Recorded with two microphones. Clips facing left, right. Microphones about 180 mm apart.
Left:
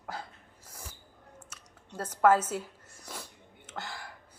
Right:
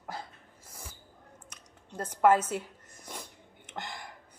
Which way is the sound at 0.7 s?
10° right (ahead or behind).